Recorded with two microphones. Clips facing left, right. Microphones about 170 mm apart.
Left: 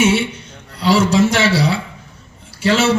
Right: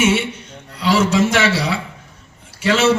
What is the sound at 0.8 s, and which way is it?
A man's voice, 35° left (ahead or behind).